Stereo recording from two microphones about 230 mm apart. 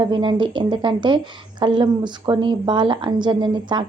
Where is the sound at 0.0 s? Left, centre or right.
Right.